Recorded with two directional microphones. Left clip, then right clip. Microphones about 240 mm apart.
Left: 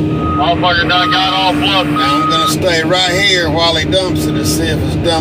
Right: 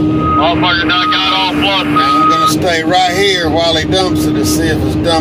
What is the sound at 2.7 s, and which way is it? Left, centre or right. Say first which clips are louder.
Speech: right 1 dB; centre.